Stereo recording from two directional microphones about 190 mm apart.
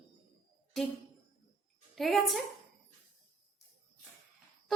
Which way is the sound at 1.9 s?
Centre (ahead or behind).